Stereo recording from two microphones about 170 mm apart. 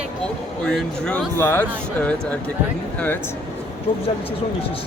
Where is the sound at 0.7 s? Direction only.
5° left (ahead or behind).